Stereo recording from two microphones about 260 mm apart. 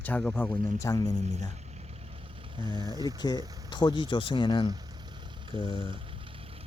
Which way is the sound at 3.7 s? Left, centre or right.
Centre.